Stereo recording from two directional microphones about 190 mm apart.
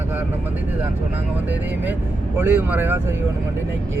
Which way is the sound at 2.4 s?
10° right (ahead or behind).